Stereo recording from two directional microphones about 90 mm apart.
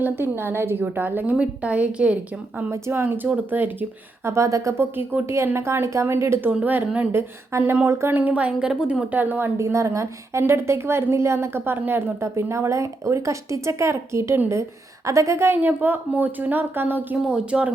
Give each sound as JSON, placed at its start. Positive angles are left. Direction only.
{"t": 0.0, "sound": "a woman's voice", "side_deg": -25}
{"t": 2.6, "sound": "a woman's voice", "side_deg": -30}
{"t": 6.5, "sound": "a woman's voice", "side_deg": -20}
{"t": 9.1, "sound": "a woman's voice", "side_deg": -20}
{"t": 17.2, "sound": "speech", "side_deg": -10}